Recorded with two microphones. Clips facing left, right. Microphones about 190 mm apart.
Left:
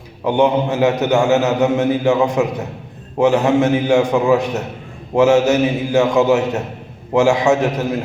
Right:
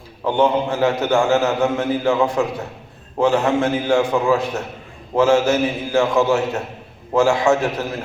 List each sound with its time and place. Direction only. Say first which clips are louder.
0.3 s a man's voice: left 2 dB; 20° left (ahead or behind)